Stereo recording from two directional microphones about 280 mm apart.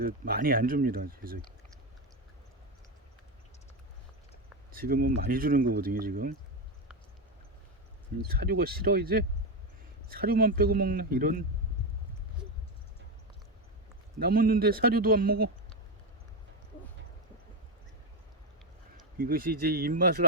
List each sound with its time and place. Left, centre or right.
0.0 s a man's voice: right
4.7 s a man's voice: right
8.3 s a man's voice: right
14.2 s a man's voice: right
19.1 s a man's voice: right